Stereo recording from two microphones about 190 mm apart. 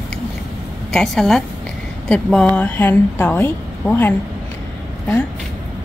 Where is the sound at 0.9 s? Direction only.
Centre (ahead or behind).